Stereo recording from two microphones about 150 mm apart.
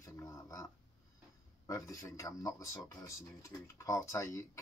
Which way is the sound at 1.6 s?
20° left (ahead or behind).